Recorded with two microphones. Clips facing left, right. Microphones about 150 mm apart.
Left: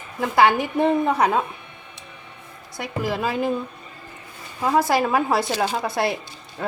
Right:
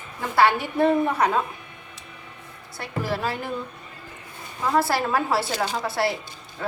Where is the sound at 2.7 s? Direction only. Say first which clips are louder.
Left 2 dB; 15° left (ahead or behind).